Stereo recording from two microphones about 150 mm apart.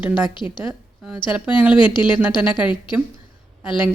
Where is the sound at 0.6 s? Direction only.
5° right (ahead or behind).